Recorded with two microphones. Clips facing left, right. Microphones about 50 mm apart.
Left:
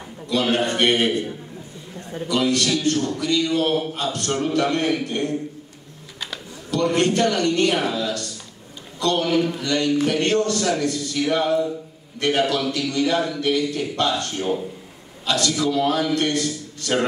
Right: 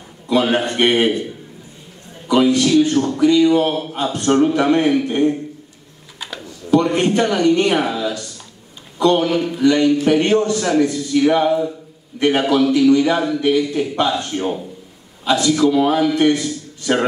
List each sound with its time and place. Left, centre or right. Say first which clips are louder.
0.3 s a man's voice: right 4 dB; right
2.2 s a man's voice: right 6 dB; centre
6.7 s a man's voice: right 5 dB; right